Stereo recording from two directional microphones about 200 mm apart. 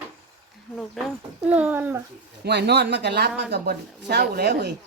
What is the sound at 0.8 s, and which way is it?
Speech, centre (ahead or behind).